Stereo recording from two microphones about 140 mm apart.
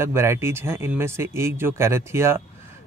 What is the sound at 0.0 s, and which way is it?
Speech, 20° right (ahead or behind).